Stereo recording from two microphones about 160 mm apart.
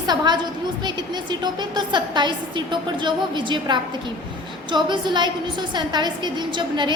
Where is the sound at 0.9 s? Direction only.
30° right (ahead or behind).